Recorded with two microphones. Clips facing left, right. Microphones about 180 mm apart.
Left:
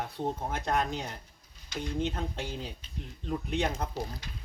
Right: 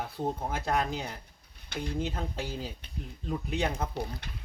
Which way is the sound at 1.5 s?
60° right (ahead or behind).